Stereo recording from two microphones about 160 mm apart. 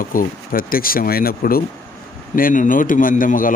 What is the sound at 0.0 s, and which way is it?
Speech, 60° left (ahead or behind).